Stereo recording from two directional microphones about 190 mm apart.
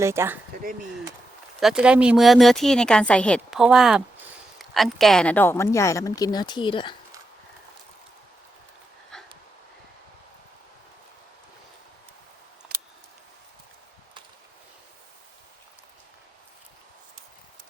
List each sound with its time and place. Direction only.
0.0 s speech: 15° right (ahead or behind)
1.6 s speech: 5° right (ahead or behind); by 6.9 s 25° left (ahead or behind)
9.1 s dog: 5° left (ahead or behind)